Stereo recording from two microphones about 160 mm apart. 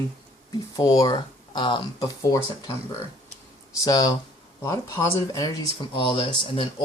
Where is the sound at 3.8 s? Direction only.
25° left (ahead or behind).